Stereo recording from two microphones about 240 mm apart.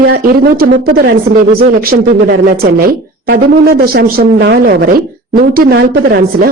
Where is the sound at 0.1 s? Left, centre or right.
Right.